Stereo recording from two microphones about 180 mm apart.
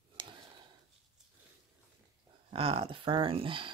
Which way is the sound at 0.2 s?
25° right (ahead or behind).